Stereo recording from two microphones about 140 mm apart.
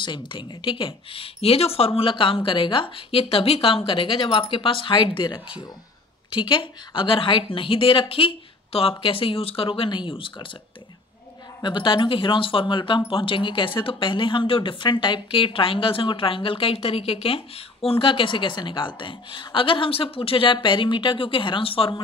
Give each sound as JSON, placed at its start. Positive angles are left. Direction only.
{"t": 0.0, "sound": "speech", "side_deg": 35}
{"t": 11.6, "sound": "speech", "side_deg": 35}